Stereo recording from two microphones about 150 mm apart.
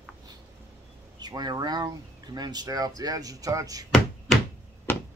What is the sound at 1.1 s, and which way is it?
Speech, 25° right (ahead or behind).